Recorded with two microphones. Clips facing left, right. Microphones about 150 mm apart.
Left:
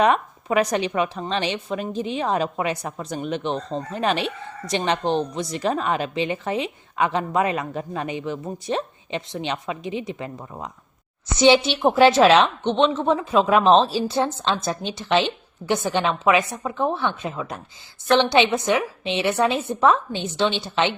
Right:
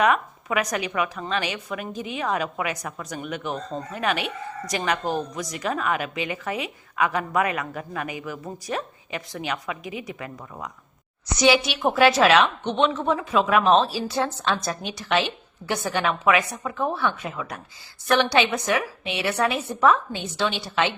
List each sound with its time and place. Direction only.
0.0 s a woman's voice: 30° left (ahead or behind)